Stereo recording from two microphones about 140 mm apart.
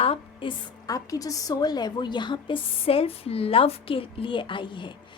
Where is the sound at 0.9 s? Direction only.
25° left (ahead or behind).